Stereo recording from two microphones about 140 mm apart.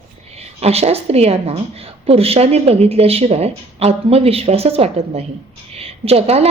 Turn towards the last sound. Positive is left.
turn(degrees=-45)  # may be behind; listen again after turning